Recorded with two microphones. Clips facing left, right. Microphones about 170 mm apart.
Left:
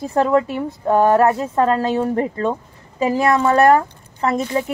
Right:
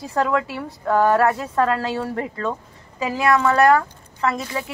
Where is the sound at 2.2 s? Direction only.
30° left (ahead or behind).